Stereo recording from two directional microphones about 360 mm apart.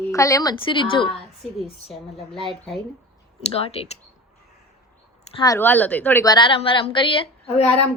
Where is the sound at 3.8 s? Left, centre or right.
Centre.